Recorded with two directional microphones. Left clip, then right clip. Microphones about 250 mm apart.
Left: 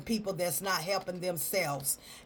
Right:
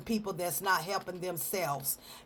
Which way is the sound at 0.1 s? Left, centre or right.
Right.